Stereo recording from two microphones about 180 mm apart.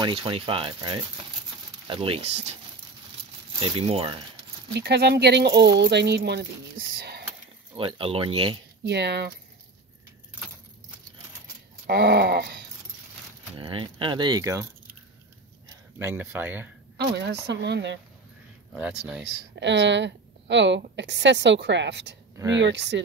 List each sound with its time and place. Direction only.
0.0 s speech: 30° right (ahead or behind)
3.5 s speech: 30° right (ahead or behind)
4.7 s speech: 65° right (ahead or behind)
7.7 s speech: 30° right (ahead or behind)
8.8 s speech: 70° right (ahead or behind)
11.9 s speech: 65° right (ahead or behind)
13.6 s speech: 30° right (ahead or behind)
16.0 s speech: 10° right (ahead or behind)
17.2 s speech: 70° right (ahead or behind)
18.8 s speech: 5° right (ahead or behind)
19.6 s a woman's voice: 80° right